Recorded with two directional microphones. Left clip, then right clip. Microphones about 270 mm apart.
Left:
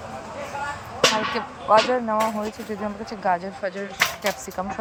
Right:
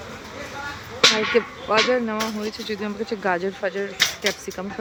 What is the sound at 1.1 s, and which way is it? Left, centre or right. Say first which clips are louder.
Speech: right 4 dB; right.